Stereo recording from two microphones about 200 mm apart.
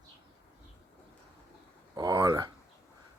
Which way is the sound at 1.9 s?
20° right (ahead or behind).